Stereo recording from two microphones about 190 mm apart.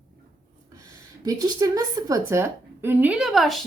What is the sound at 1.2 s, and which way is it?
A woman's voice, 20° right (ahead or behind).